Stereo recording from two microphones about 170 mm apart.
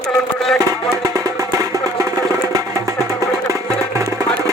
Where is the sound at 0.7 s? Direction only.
20° right (ahead or behind).